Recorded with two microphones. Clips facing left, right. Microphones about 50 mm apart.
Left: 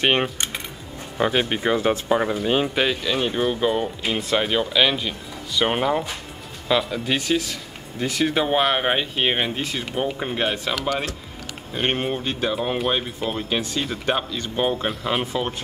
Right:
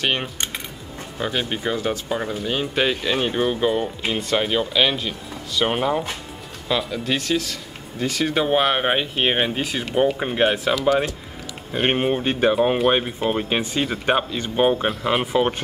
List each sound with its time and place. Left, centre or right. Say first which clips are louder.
0.0 s speech: left 3 dB; left
2.7 s speech: right 1 dB; centre
3.0 s speech: right 1 dB; centre
11.7 s speech: right 3 dB; centre
12.2 s speech: right 6 dB; right